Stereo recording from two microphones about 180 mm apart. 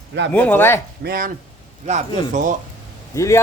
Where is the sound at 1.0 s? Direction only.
55° right (ahead or behind).